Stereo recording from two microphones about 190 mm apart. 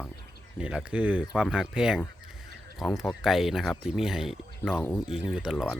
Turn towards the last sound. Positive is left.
turn(degrees=0)  # may be behind; listen again after turning